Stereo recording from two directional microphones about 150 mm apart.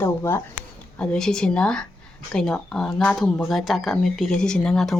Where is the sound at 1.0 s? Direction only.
5° left (ahead or behind).